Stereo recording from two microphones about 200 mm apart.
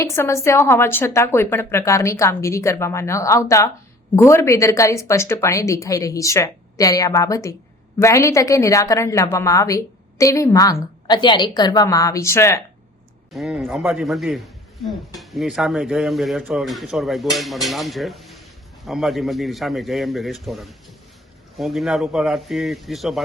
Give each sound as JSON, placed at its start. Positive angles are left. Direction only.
{"t": 0.0, "sound": "a woman's voice", "side_deg": 15}
{"t": 13.3, "sound": "a man's voice", "side_deg": 0}